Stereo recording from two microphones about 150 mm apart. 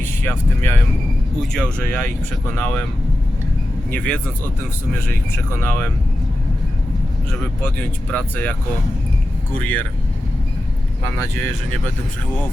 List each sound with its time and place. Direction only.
0.2 s speech: 15° left (ahead or behind)
3.9 s speech: 10° left (ahead or behind)
7.3 s speech: 10° left (ahead or behind)
9.6 s speech: 10° left (ahead or behind)
11.0 s speech: 15° left (ahead or behind)